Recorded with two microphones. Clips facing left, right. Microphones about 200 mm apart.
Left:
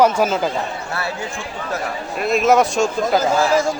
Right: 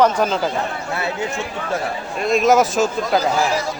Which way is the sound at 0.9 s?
20° right (ahead or behind).